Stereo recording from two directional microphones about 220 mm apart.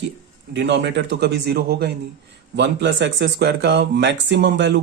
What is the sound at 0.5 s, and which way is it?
Speech, 55° right (ahead or behind).